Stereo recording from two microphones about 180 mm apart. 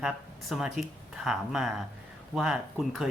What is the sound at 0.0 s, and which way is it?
A man's voice, centre (ahead or behind).